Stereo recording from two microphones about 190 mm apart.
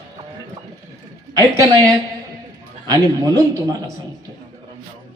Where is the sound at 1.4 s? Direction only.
15° right (ahead or behind).